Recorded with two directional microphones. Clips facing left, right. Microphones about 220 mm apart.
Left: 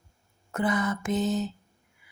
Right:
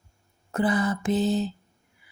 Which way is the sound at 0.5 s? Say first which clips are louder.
Right 3 dB; 30° right (ahead or behind).